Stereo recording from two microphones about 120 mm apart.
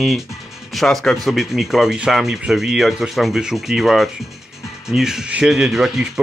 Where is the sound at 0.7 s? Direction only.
Centre (ahead or behind).